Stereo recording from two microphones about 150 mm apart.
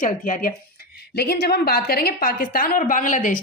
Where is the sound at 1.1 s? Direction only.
90° left.